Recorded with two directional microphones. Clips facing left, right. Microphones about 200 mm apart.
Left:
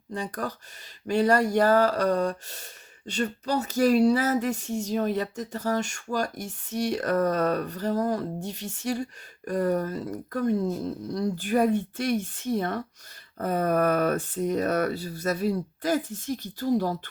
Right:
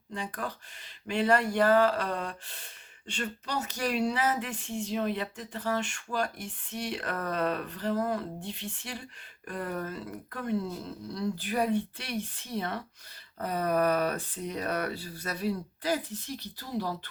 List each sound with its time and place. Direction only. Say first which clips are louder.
0.1 s speech: left 5 dB; 40° left (ahead or behind)